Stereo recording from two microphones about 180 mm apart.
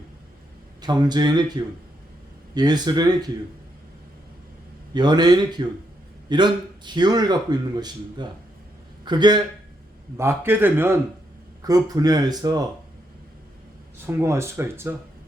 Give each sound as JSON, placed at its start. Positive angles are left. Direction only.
{"t": 0.8, "sound": "a man's voice", "side_deg": -25}
{"t": 4.9, "sound": "a man's voice", "side_deg": -25}
{"t": 10.2, "sound": "a man's voice", "side_deg": -15}
{"t": 14.1, "sound": "speech", "side_deg": -15}